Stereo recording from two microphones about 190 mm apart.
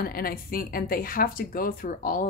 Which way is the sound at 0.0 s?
50° left (ahead or behind).